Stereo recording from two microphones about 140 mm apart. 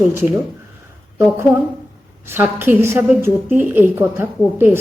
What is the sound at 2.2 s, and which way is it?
Speech, 15° right (ahead or behind).